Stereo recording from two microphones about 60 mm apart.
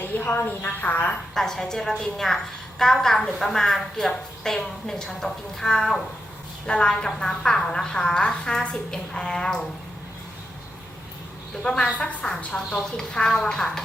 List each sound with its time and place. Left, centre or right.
0.2 s a woman's voice: left
1.3 s a woman's voice: centre
11.6 s a woman's voice: centre